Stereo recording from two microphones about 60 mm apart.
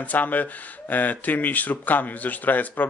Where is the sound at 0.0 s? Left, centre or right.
Left.